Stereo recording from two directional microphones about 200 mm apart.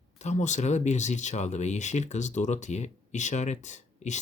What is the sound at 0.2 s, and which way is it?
Speech, 35° left (ahead or behind).